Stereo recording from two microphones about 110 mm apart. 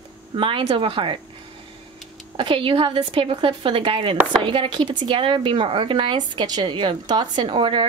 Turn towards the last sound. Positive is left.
turn(degrees=-50)  # may be behind; listen again after turning